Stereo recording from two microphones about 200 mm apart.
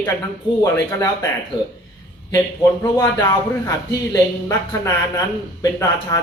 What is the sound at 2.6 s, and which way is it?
Speech, 15° left (ahead or behind).